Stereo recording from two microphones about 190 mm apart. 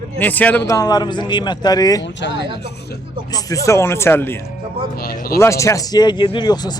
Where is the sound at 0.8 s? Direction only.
20° left (ahead or behind).